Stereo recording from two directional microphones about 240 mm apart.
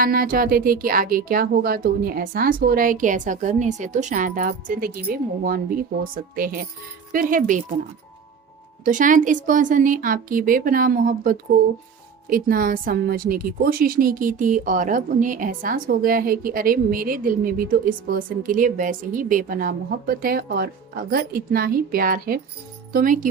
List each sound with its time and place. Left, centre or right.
0.0 s a woman's voice: right
8.8 s a woman's voice: right